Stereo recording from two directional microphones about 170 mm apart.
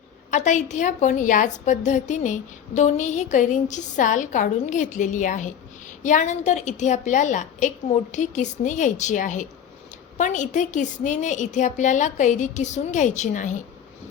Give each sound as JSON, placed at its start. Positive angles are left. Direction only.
{"t": 0.3, "sound": "a woman's voice", "side_deg": 45}